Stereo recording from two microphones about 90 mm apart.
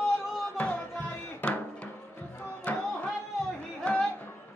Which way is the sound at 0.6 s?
20° left (ahead or behind).